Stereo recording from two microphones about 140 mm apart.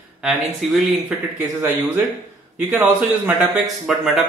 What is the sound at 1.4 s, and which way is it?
Speech, 25° right (ahead or behind).